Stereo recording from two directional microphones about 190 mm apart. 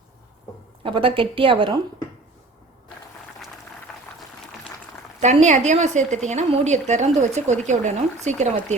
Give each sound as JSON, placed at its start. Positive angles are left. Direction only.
{"t": 0.8, "sound": "a woman's voice", "side_deg": -25}
{"t": 5.2, "sound": "a woman's voice", "side_deg": -35}